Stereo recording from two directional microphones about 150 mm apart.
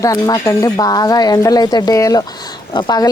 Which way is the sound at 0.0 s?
20° left (ahead or behind).